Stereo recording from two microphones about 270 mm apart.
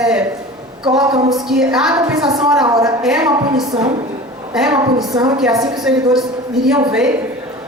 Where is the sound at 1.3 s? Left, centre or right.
Centre.